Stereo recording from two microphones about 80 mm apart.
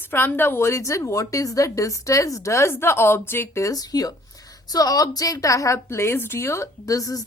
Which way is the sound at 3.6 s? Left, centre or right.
Left.